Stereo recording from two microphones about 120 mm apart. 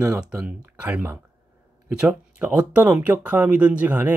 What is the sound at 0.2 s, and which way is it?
Speech, 10° right (ahead or behind).